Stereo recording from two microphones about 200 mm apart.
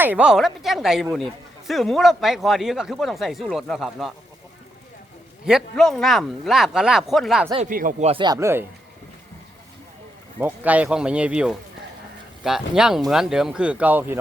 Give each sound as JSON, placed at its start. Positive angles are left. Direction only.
{"t": 0.0, "sound": "a man's voice", "side_deg": -5}
{"t": 5.5, "sound": "a man's voice", "side_deg": 0}
{"t": 7.7, "sound": "speech", "side_deg": -45}
{"t": 10.4, "sound": "a man's voice", "side_deg": -10}